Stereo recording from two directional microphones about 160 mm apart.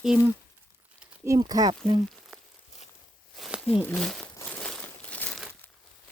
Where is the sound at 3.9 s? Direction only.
5° left (ahead or behind).